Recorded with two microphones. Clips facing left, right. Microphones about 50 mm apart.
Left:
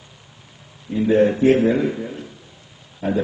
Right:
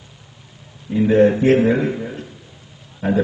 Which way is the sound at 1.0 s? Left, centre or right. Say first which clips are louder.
Right 1 dB; right.